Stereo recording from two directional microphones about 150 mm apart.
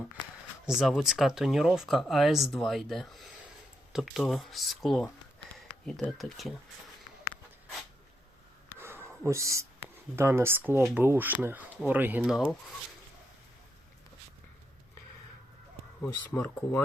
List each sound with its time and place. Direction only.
0.6 s speech: centre (ahead or behind)
8.8 s a sound: 15° right (ahead or behind)
10.2 s speech: 15° right (ahead or behind)
16.3 s speech: 10° left (ahead or behind)